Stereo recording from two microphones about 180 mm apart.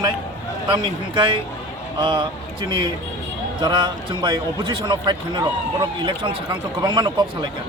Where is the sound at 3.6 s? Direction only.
25° right (ahead or behind).